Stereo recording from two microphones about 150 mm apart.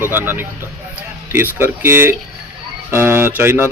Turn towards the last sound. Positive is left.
turn(degrees=-15)  # may be behind; listen again after turning